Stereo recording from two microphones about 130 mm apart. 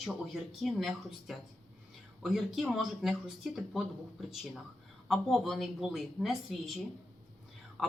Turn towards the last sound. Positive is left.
turn(degrees=0)  # may be behind; listen again after turning